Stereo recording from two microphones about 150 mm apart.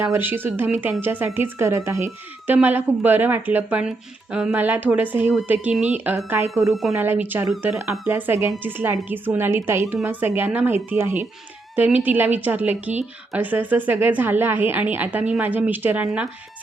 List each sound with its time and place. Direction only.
0.0 s speech: 15° right (ahead or behind)